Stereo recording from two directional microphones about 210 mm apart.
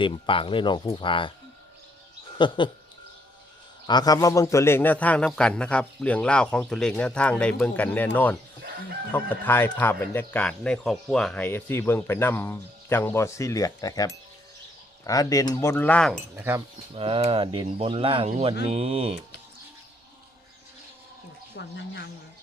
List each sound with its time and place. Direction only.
0.0 s speech: 25° left (ahead or behind)
2.4 s speech: 20° left (ahead or behind)
3.8 s speech: 20° left (ahead or behind)
15.7 s speech: 5° left (ahead or behind)
16.3 s speech: 10° right (ahead or behind)
16.9 s speech: 25° right (ahead or behind)
21.5 s speech: 55° left (ahead or behind)